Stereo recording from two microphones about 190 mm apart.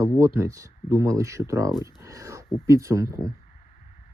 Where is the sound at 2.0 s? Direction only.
15° right (ahead or behind).